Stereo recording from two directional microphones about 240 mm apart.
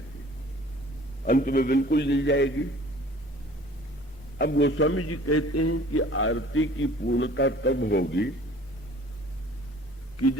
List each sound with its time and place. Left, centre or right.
1.2 s a man's voice: left
4.4 s a man's voice: left